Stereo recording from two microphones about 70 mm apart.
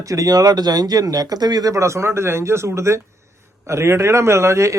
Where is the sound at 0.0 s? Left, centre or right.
Right.